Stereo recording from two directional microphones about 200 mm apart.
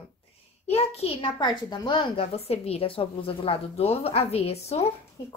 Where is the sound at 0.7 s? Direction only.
30° left (ahead or behind).